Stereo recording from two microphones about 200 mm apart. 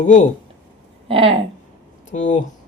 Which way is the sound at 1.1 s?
25° right (ahead or behind).